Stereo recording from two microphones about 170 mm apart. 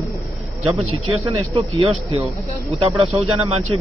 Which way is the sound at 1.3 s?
35° right (ahead or behind).